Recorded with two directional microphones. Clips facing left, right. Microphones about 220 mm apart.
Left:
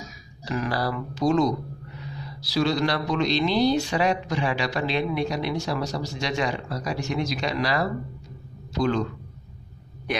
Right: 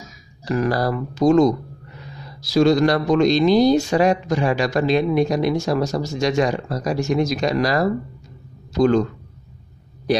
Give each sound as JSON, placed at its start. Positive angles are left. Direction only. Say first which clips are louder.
{"t": 0.5, "sound": "a man's voice", "louder": "right 7 dB", "side_deg": -45}